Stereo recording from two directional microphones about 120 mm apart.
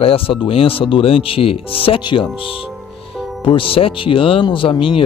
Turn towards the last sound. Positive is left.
turn(degrees=45)  # may be behind; listen again after turning